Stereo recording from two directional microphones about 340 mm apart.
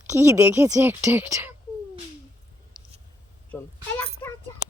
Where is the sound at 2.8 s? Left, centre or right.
Centre.